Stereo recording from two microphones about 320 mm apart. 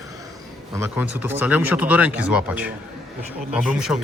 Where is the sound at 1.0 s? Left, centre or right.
Left.